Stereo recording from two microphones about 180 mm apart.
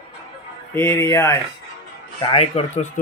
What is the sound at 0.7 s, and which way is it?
Speech, 10° left (ahead or behind).